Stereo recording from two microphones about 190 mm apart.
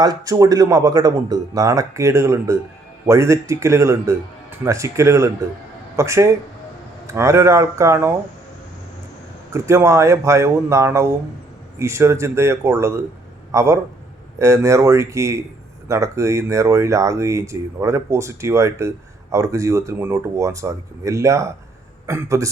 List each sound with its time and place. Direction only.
0.0 s speech: 20° right (ahead or behind)
9.5 s a man's voice: 15° right (ahead or behind)